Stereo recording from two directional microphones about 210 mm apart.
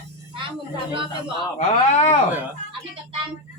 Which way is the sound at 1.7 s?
35° left (ahead or behind).